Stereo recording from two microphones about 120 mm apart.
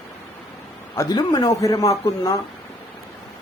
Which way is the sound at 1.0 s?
35° left (ahead or behind).